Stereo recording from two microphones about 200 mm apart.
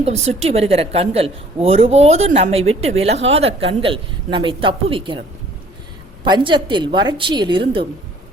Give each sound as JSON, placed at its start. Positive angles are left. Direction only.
{"t": 0.0, "sound": "a woman's voice", "side_deg": -30}
{"t": 6.2, "sound": "speech", "side_deg": -20}